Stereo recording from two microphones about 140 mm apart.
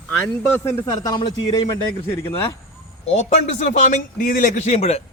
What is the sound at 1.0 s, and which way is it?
Speech, 30° left (ahead or behind).